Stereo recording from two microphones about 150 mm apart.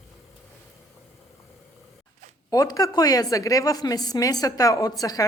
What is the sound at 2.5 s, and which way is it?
A woman's voice, 25° left (ahead or behind).